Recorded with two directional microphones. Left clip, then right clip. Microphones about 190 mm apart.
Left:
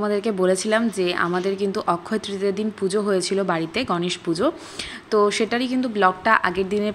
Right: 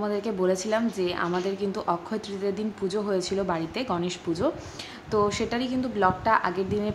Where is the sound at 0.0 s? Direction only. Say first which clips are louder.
Left 5 dB; 15° left (ahead or behind).